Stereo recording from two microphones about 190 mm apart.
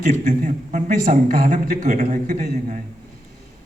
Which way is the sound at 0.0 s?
40° right (ahead or behind).